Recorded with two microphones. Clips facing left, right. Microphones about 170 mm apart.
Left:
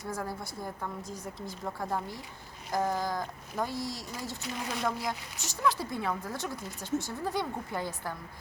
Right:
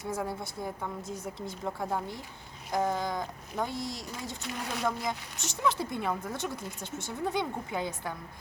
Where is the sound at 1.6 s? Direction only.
Centre (ahead or behind).